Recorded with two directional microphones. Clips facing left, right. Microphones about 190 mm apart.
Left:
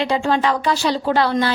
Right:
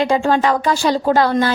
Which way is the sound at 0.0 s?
45° right (ahead or behind).